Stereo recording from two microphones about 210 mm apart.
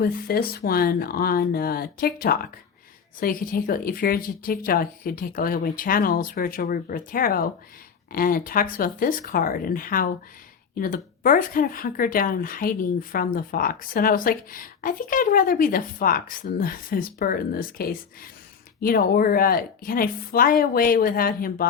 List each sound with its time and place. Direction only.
0.0 s speech: 45° left (ahead or behind)